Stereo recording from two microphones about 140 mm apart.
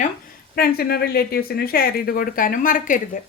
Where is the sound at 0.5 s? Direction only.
90° left; by 3.2 s 70° left (ahead or behind).